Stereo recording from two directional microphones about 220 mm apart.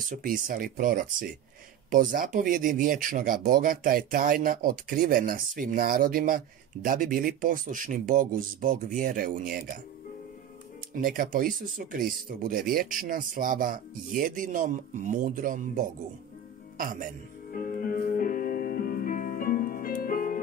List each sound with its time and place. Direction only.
0.0 s speech: 35° right (ahead or behind)
11.0 s speech: 40° right (ahead or behind)
17.5 s music: 40° left (ahead or behind)